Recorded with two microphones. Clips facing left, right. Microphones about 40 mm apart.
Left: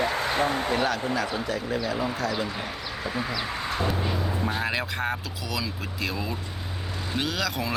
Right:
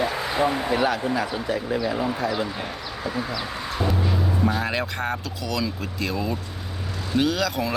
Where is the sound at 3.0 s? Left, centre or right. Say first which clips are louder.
Right 2 dB; centre.